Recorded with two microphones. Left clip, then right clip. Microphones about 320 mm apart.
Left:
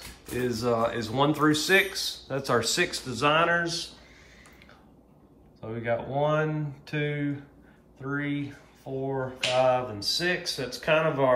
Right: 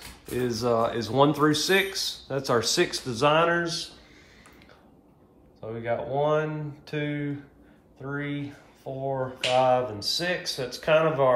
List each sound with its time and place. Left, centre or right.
0.4 s speech: centre
5.6 s speech: centre